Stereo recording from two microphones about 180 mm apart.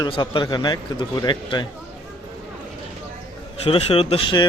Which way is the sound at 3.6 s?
30° left (ahead or behind).